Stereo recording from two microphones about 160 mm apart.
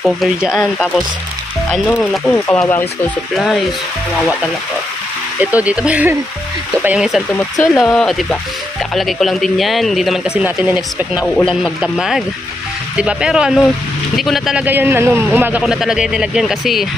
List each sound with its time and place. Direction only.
0.0 s speech: centre (ahead or behind)
5.4 s speech: 10° right (ahead or behind)
7.6 s speech: 20° left (ahead or behind)
8.0 s speech: 5° left (ahead or behind)
11.2 s speech: 5° left (ahead or behind)